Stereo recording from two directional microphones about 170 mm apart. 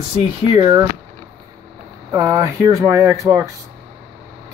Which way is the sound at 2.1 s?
20° right (ahead or behind).